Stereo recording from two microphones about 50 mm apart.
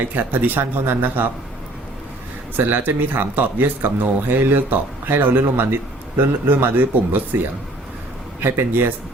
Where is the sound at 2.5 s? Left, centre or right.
Right.